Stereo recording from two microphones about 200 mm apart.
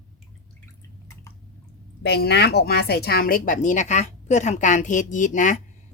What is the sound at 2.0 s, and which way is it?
A woman's voice, 55° left (ahead or behind).